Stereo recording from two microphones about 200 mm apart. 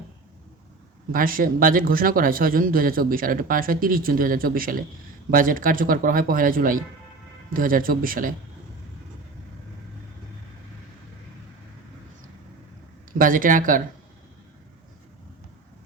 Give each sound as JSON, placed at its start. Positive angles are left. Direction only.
{"t": 1.1, "sound": "speech", "side_deg": -45}
{"t": 13.1, "sound": "speech", "side_deg": -45}